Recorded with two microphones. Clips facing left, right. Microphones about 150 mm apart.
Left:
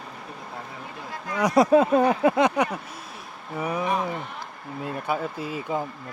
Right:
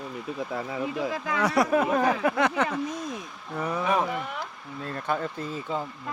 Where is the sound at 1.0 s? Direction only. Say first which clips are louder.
Even; 90° right.